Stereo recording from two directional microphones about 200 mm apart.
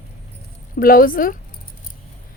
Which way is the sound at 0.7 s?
45° left (ahead or behind).